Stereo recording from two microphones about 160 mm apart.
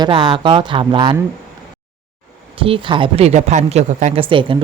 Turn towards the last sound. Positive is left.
turn(degrees=-30)  # may be behind; listen again after turning